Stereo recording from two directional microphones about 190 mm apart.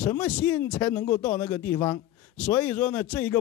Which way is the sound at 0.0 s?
10° left (ahead or behind).